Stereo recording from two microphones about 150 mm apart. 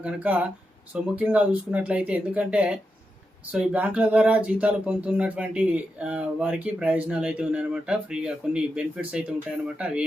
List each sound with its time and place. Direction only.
0.0 s speech: 10° right (ahead or behind)